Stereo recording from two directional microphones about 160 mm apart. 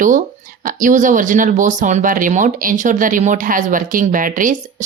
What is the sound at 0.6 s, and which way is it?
Speech, 55° right (ahead or behind).